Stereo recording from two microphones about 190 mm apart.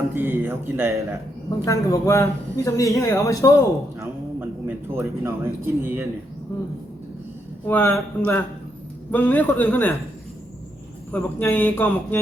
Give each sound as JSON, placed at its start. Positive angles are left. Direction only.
{"t": 0.1, "sound": "speech", "side_deg": -10}
{"t": 1.6, "sound": "speech", "side_deg": 15}
{"t": 4.0, "sound": "speech", "side_deg": -10}
{"t": 7.7, "sound": "speech", "side_deg": 10}
{"t": 11.1, "sound": "speech", "side_deg": 10}